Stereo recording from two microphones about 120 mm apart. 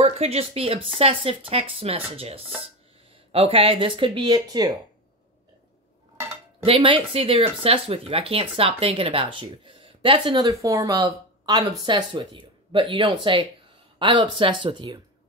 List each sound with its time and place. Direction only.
0.0 s speech: 60° right (ahead or behind); by 4.7 s 35° right (ahead or behind)
6.6 s speech: 50° right (ahead or behind)
10.5 s speech: 25° right (ahead or behind)